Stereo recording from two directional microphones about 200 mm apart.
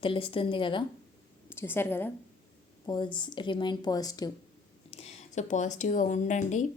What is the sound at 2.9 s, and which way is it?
A woman's voice, 25° left (ahead or behind).